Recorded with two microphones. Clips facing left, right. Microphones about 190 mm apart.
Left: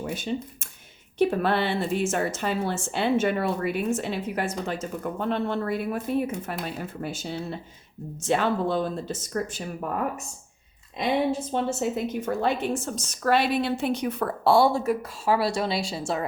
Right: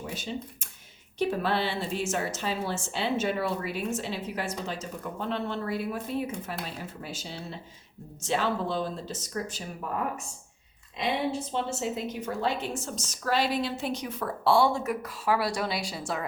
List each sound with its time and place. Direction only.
0.0 s a woman's voice: 55° left (ahead or behind)
11.5 s a woman's voice: 50° left (ahead or behind)
14.5 s speech: 35° left (ahead or behind)